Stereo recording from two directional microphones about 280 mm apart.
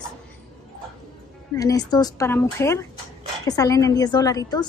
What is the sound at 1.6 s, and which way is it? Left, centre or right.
A woman's voice, centre.